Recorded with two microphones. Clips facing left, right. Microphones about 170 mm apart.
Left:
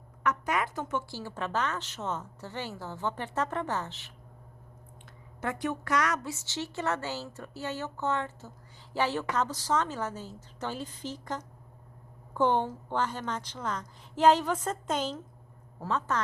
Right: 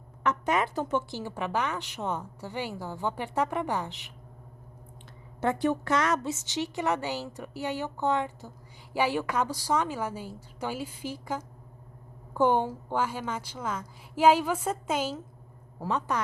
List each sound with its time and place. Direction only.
0.2 s a woman's voice: 25° right (ahead or behind)
1.1 s a woman's voice: 15° right (ahead or behind)
5.4 s a woman's voice: 30° right (ahead or behind)